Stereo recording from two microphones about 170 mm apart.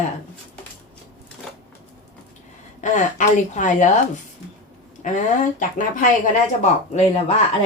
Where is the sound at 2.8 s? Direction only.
50° left (ahead or behind).